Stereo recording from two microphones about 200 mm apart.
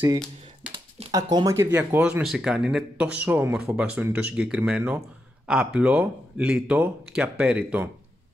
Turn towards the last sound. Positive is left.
turn(degrees=-5)  # may be behind; listen again after turning